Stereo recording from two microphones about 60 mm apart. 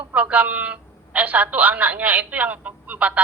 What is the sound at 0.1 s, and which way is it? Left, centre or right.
A woman's voice, right.